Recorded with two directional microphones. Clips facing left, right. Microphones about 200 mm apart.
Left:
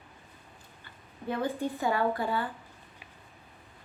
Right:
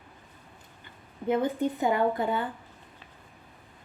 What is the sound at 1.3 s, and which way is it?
Speech, 20° right (ahead or behind).